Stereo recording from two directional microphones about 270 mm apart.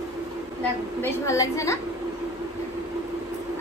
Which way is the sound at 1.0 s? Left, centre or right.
Centre.